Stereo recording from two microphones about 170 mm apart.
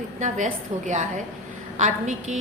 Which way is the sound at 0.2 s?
45° right (ahead or behind).